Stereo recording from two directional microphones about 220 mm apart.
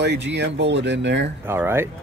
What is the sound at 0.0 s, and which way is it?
Speech, 50° right (ahead or behind).